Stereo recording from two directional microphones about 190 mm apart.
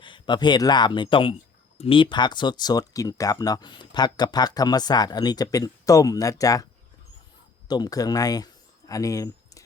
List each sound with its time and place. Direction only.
0.0 s speech: 25° left (ahead or behind)
7.7 s speech: 20° left (ahead or behind)
8.9 s a sound: 15° left (ahead or behind)